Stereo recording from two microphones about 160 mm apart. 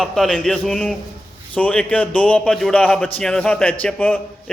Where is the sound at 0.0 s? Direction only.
Centre (ahead or behind).